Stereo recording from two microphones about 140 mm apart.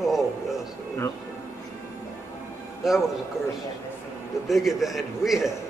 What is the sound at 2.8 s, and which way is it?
Speech, centre (ahead or behind).